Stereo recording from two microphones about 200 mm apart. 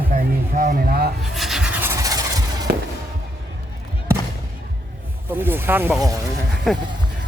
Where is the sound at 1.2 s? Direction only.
Centre (ahead or behind); by 2.6 s 20° right (ahead or behind).